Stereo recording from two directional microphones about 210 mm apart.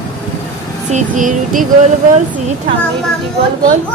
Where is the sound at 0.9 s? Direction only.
35° right (ahead or behind).